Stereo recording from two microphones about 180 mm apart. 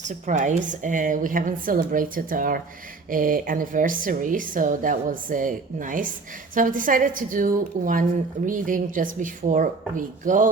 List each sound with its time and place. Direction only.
0.0 s a woman's voice: 45° right (ahead or behind)